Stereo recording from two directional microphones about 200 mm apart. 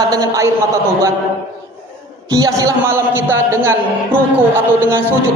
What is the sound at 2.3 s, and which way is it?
A man's voice, 15° right (ahead or behind).